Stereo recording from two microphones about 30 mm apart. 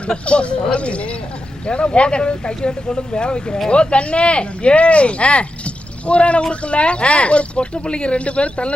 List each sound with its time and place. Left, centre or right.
0.3 s speech: left